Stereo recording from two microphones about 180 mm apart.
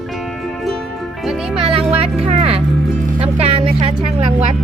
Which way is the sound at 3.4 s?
35° right (ahead or behind).